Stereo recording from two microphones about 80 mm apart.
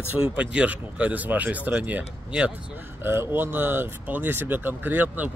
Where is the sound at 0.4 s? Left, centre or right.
Centre.